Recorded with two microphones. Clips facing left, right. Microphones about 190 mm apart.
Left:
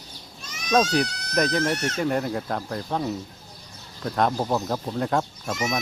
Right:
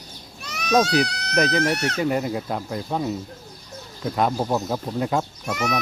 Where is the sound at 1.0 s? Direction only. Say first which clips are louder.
Right 5 dB; 65° right (ahead or behind).